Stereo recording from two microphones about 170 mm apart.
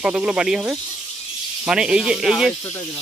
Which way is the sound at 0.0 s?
5° right (ahead or behind).